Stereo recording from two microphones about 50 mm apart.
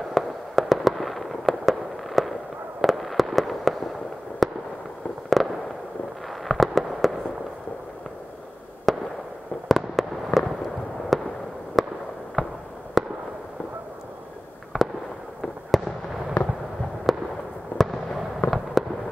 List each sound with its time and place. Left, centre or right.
0.1 s fireworks: centre
8.9 s fireworks: centre
14.7 s fireworks: centre
16.4 s fireworks: left
17.1 s fireworks: centre
18.4 s fireworks: left